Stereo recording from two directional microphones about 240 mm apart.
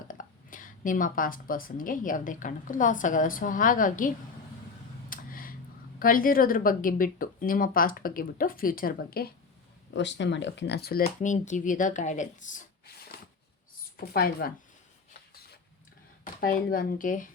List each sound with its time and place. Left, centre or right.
0.1 s a woman's voice: left
5.0 s a sound: left
6.0 s a woman's voice: left
16.2 s speech: left